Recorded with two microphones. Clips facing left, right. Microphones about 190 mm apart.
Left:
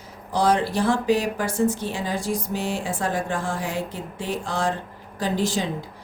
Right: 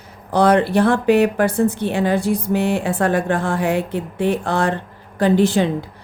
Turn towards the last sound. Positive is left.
turn(degrees=-60)  # may be behind; listen again after turning